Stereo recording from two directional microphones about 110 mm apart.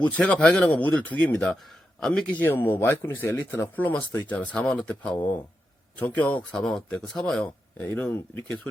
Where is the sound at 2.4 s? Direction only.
20° left (ahead or behind).